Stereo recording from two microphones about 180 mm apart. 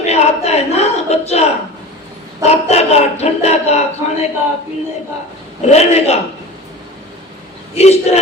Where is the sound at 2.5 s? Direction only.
35° left (ahead or behind).